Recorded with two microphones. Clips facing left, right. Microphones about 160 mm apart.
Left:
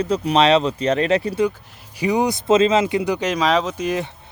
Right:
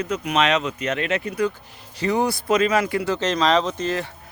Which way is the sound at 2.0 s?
15° left (ahead or behind).